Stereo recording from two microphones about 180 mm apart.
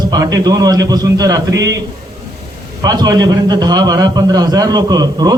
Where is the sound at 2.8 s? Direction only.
20° right (ahead or behind).